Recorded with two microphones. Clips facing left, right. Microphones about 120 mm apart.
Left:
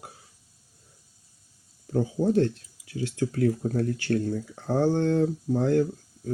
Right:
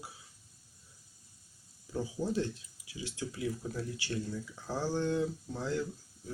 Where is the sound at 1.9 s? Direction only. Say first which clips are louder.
Left 10 dB; 50° left (ahead or behind).